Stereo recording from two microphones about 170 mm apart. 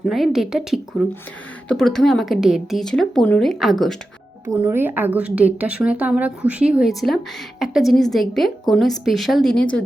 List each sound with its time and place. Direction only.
0.0 s speech: centre (ahead or behind)
4.7 s a woman's voice: 10° right (ahead or behind); by 9.6 s 5° left (ahead or behind)